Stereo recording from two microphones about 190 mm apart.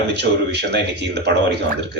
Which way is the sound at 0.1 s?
65° right (ahead or behind).